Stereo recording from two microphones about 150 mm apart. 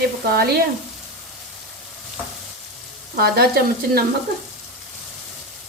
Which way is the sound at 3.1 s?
90° right.